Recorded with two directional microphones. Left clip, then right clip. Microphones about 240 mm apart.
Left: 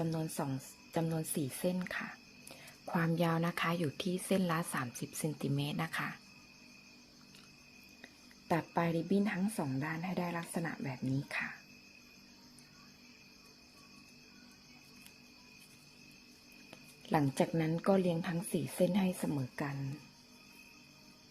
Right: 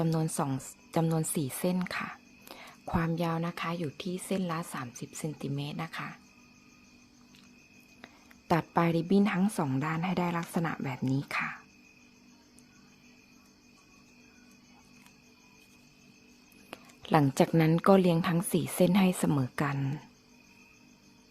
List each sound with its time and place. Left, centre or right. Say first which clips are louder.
0.0 s speech: right 6 dB; right; by 6.1 s centre
8.0 s speech: right 6 dB; right
16.6 s speech: right 6 dB; right